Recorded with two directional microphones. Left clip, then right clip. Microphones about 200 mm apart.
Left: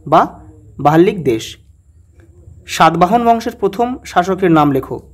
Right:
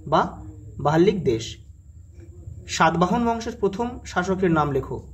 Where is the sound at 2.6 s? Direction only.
50° left (ahead or behind).